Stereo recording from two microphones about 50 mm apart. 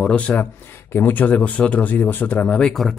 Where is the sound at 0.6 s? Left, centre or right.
Left.